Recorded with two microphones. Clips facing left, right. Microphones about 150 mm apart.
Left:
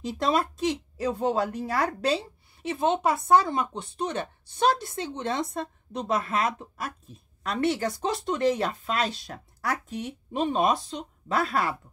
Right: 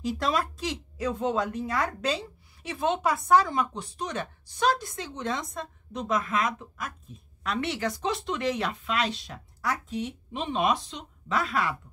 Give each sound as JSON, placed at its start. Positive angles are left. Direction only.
{"t": 0.0, "sound": "speech", "side_deg": 25}
{"t": 7.4, "sound": "speech", "side_deg": 45}